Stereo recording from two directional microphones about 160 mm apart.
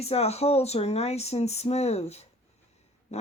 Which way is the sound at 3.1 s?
40° left (ahead or behind).